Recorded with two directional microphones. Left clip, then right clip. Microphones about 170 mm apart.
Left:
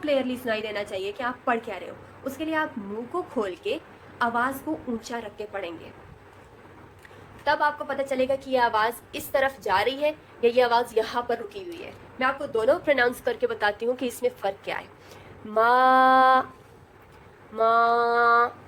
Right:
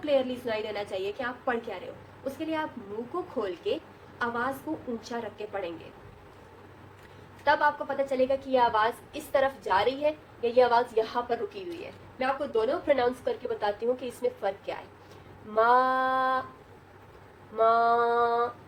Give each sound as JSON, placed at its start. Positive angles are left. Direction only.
{"t": 0.0, "sound": "a woman's voice", "side_deg": 40}
{"t": 7.4, "sound": "a woman's voice", "side_deg": 45}
{"t": 12.2, "sound": "a woman's voice", "side_deg": 45}
{"t": 17.6, "sound": "female singing", "side_deg": 80}